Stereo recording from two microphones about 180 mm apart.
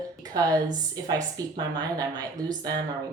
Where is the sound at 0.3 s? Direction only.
20° right (ahead or behind).